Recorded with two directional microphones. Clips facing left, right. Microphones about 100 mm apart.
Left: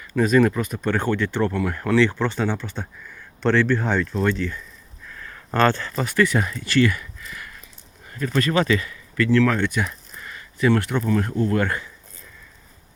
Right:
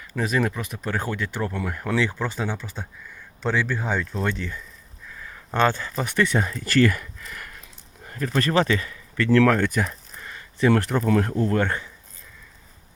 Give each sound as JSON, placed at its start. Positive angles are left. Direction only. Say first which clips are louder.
{"t": 0.2, "sound": "speech", "louder": "left 7 dB", "side_deg": -5}
{"t": 4.2, "sound": "speech", "louder": "left 5 dB", "side_deg": -20}
{"t": 6.6, "sound": "speech", "louder": "right 1 dB", "side_deg": -45}
{"t": 8.1, "sound": "speech", "louder": "even", "side_deg": -35}